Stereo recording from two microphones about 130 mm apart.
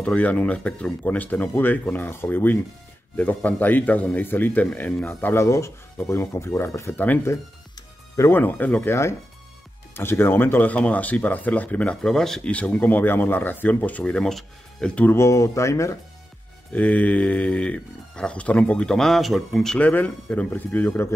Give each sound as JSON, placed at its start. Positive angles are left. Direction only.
{"t": 0.0, "sound": "speech", "side_deg": 10}
{"t": 15.0, "sound": "speech", "side_deg": 20}
{"t": 16.7, "sound": "speech", "side_deg": 10}